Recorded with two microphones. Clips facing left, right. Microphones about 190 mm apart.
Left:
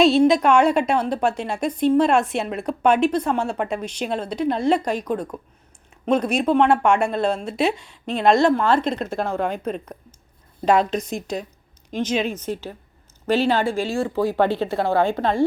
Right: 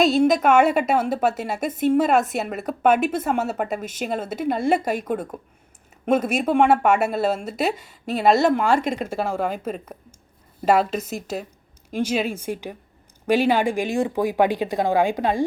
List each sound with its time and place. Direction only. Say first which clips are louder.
0.0 s speech: left 2 dB; centre (ahead or behind)